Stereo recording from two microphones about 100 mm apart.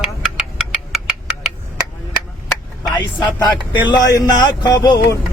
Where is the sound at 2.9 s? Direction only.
45° left (ahead or behind).